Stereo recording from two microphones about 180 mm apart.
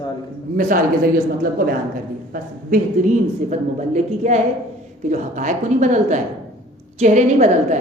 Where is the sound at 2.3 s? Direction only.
50° right (ahead or behind).